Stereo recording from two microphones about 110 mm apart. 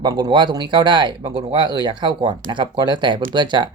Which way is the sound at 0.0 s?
40° right (ahead or behind).